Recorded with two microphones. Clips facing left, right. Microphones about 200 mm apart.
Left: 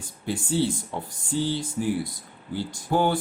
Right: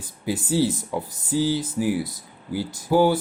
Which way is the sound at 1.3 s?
5° right (ahead or behind).